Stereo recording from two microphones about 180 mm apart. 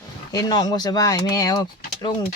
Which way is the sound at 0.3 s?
25° left (ahead or behind).